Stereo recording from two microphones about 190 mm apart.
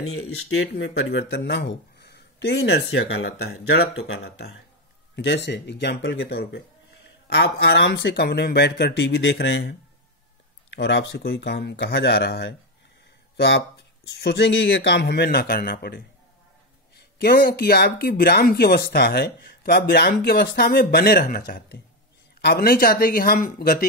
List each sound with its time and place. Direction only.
0.0 s speech: 90° left; by 23.9 s 50° left (ahead or behind)